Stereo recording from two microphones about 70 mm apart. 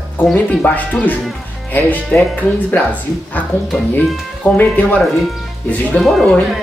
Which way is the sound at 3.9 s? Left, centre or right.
Left.